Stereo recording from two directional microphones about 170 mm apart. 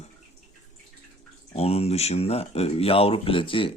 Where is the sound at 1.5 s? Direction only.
35° left (ahead or behind).